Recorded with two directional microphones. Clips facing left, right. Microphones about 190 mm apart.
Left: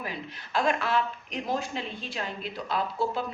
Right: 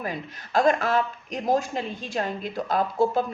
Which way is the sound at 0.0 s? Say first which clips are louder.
Right 5 dB; 45° right (ahead or behind).